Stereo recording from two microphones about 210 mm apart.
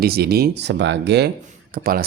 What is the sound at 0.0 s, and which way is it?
Speech, 50° right (ahead or behind).